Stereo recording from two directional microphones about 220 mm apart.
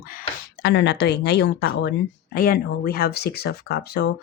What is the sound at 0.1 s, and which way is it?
Speech, 45° left (ahead or behind).